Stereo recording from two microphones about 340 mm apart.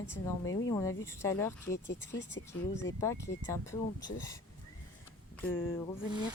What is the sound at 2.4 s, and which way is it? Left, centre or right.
Speech, left.